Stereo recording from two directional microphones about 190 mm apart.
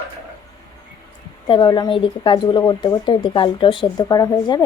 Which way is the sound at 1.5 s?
25° left (ahead or behind).